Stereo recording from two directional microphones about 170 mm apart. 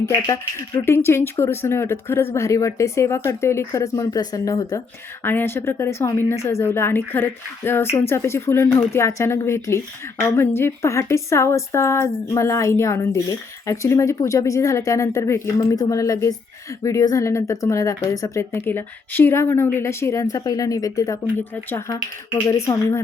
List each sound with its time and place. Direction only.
0.0 s a woman's voice: 20° left (ahead or behind)